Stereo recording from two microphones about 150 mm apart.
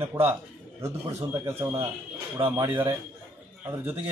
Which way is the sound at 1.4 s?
15° right (ahead or behind).